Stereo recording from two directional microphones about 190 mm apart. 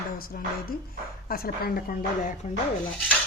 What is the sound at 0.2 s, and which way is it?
A woman's voice, 50° left (ahead or behind).